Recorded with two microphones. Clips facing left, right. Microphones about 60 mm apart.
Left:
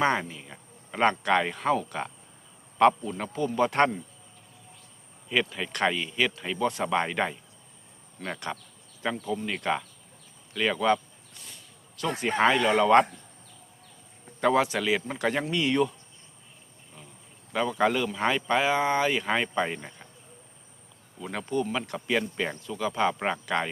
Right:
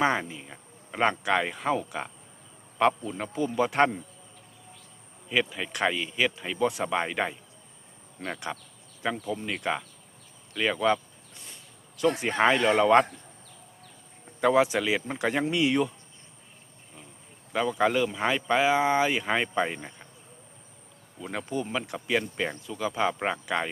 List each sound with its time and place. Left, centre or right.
0.0 s speech: centre
5.3 s speech: centre
8.2 s speech: centre
9.2 s speech: centre
11.3 s a sound: right
12.4 s speech: centre
14.3 s a sound: centre
14.6 s speech: centre
17.5 s speech: centre
21.2 s speech: centre